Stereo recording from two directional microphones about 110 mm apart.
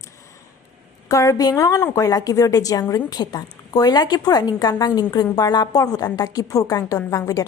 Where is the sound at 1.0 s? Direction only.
30° left (ahead or behind).